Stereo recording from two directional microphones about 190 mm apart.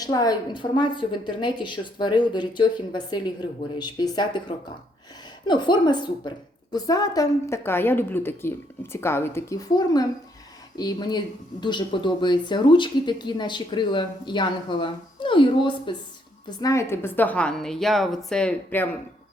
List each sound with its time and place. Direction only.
0.0 s a woman's voice: 20° left (ahead or behind)